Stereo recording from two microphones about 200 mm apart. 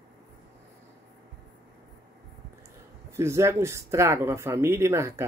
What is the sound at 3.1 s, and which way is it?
Speech, 15° right (ahead or behind).